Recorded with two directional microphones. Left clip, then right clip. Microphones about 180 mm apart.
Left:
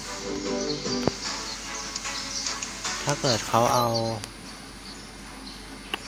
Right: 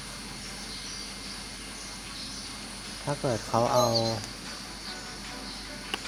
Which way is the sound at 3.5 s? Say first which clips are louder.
Left 1 dB; 5° left (ahead or behind).